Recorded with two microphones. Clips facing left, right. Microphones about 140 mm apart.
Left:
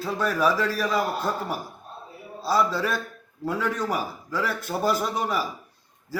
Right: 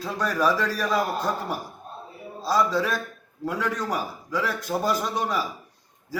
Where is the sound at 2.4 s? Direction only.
5° left (ahead or behind).